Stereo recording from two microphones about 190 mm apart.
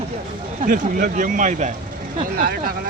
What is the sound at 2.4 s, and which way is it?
Speech, 50° right (ahead or behind).